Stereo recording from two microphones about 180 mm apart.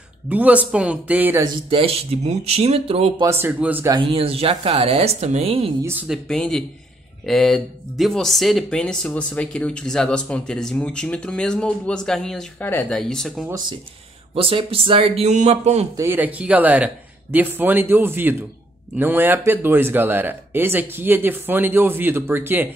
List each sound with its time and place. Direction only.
0.3 s speech: 10° right (ahead or behind)
1.4 s a woman's voice: 30° right (ahead or behind)
3.2 s speech: 15° right (ahead or behind)
3.9 s a woman's voice: 30° right (ahead or behind)
5.9 s speech: 5° right (ahead or behind)
14.3 s a woman's voice: 30° right (ahead or behind)
16.0 s speech: 10° right (ahead or behind)